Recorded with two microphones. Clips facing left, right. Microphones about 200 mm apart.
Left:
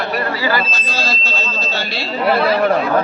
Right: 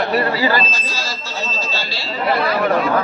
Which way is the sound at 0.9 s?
60° left (ahead or behind).